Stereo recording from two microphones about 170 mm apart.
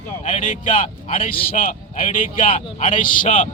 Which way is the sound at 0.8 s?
35° left (ahead or behind).